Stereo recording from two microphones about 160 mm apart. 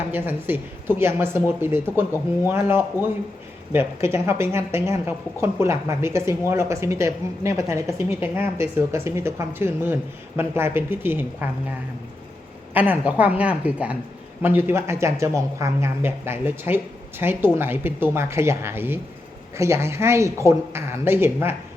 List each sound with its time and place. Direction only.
0.1 s speech: 15° right (ahead or behind)
12.7 s speech: 10° right (ahead or behind)